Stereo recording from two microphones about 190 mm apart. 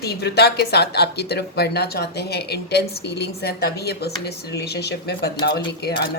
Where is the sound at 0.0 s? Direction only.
55° left (ahead or behind).